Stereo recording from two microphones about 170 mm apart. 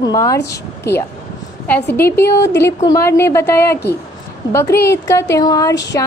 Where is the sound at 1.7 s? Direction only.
10° left (ahead or behind).